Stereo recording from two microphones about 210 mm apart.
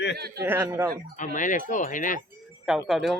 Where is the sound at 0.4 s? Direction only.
10° right (ahead or behind).